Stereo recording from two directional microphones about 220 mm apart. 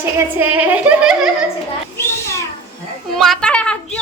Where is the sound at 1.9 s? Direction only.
15° left (ahead or behind).